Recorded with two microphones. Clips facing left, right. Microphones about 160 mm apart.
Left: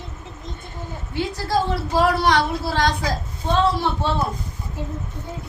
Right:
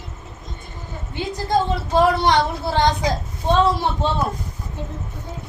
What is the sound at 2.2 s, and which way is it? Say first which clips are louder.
Speech: right 1 dB; 20° right (ahead or behind).